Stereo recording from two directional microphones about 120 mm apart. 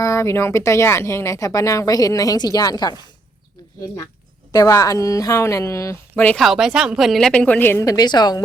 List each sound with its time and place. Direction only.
0.0 s a woman's voice: 25° left (ahead or behind)
4.5 s a woman's voice: 30° left (ahead or behind); by 6.4 s 15° left (ahead or behind)
6.4 s a woman's voice: centre (ahead or behind); by 8.4 s 35° left (ahead or behind)